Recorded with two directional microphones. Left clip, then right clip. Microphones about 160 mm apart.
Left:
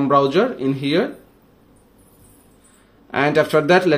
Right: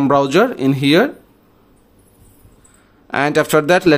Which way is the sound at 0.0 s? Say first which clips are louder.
Right 3 dB; 40° right (ahead or behind).